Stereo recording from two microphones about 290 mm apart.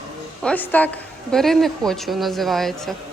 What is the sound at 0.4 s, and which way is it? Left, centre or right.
Speech, centre.